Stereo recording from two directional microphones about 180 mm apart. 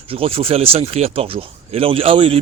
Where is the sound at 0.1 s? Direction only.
30° right (ahead or behind).